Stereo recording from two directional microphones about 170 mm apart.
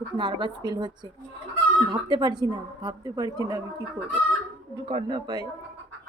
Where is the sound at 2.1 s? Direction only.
25° right (ahead or behind).